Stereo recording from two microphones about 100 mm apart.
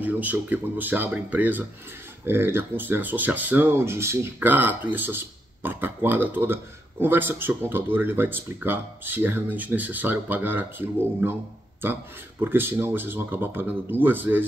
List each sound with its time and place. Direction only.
0.0 s speech: 15° right (ahead or behind)